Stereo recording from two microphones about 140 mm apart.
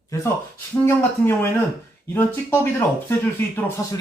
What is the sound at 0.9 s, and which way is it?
Speech, 15° left (ahead or behind).